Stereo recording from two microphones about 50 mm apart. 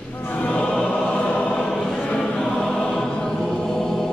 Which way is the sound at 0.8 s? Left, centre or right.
Left.